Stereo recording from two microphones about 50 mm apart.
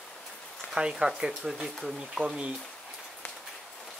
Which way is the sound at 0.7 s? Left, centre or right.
Centre.